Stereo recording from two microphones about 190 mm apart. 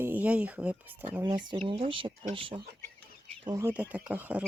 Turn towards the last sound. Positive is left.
turn(degrees=-10)  # may be behind; listen again after turning